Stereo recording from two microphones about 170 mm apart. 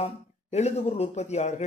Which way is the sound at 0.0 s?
40° left (ahead or behind).